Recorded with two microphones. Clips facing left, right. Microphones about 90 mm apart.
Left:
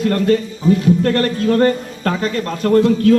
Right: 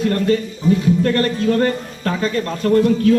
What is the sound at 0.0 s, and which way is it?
A man's voice, 40° left (ahead or behind).